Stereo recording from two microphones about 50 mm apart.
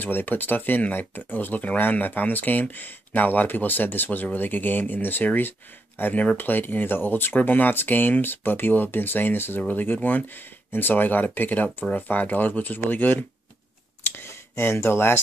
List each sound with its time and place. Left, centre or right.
0.0 s speech: left
14.0 s speech: left